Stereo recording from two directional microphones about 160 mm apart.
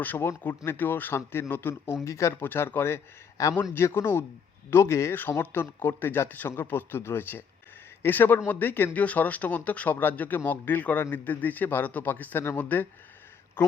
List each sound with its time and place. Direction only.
0.0 s speech: 15° left (ahead or behind)